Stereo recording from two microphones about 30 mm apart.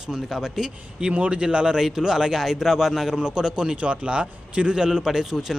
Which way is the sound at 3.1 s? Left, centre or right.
Right.